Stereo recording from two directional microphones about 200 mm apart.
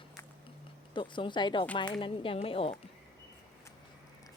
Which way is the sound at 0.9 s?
25° left (ahead or behind).